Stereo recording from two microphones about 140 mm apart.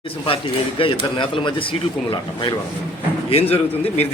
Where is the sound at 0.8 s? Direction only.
40° left (ahead or behind).